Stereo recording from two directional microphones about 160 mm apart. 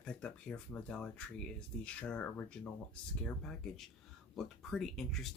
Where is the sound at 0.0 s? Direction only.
5° left (ahead or behind).